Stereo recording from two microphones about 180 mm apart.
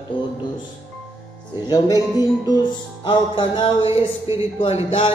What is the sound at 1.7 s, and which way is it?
Speech, 20° left (ahead or behind).